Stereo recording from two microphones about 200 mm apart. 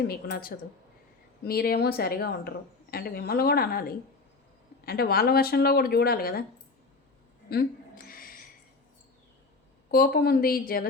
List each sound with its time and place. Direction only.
0.1 s speech: 50° left (ahead or behind)
7.5 s a sound: 50° left (ahead or behind)
9.9 s speech: 50° left (ahead or behind)